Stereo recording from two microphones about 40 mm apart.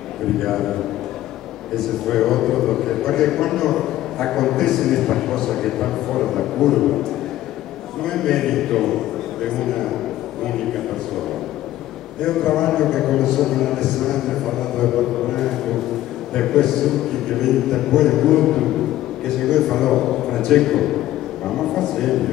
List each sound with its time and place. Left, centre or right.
0.4 s a man's voice: centre
2.0 s a man's voice: centre
8.0 s a man's voice: centre
12.3 s a man's voice: centre